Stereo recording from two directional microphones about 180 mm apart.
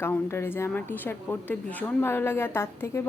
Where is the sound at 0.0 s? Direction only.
15° left (ahead or behind).